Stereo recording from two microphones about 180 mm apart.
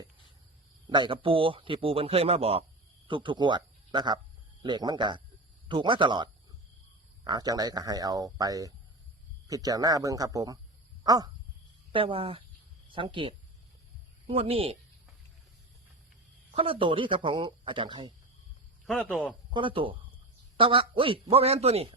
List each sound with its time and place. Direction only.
0.9 s a man's voice: 25° right (ahead or behind)
11.0 s a sound: 20° right (ahead or behind)
11.9 s a man's voice: 30° right (ahead or behind)
16.6 s speech: 30° right (ahead or behind)
18.9 s a man's voice: 5° left (ahead or behind)
19.5 s a man's voice: 30° right (ahead or behind)